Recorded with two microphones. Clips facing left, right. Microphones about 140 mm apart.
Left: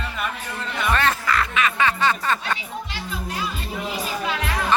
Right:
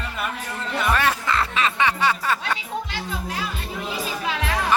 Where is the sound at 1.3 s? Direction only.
30° right (ahead or behind).